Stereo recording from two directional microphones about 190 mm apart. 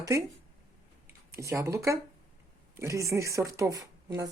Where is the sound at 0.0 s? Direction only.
15° right (ahead or behind).